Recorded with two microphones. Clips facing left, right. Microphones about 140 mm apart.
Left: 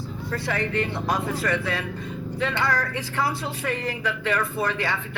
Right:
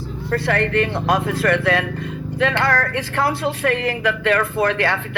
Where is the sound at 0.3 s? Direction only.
70° right (ahead or behind).